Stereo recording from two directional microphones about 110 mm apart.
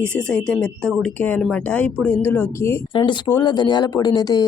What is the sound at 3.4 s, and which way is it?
Speech, 45° left (ahead or behind).